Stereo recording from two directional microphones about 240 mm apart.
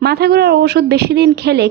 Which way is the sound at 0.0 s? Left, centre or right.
Right.